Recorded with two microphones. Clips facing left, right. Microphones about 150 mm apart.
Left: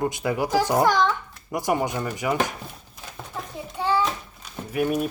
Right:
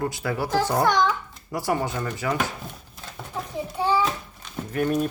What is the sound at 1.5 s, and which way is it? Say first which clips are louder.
Speech: left 2 dB; 20° left (ahead or behind).